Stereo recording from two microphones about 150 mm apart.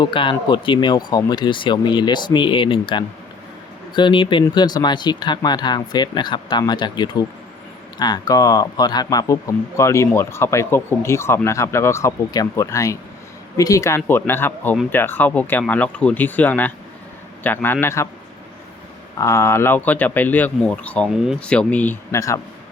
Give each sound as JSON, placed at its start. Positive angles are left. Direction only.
{"t": 0.0, "sound": "speech", "side_deg": 35}
{"t": 19.2, "sound": "speech", "side_deg": 20}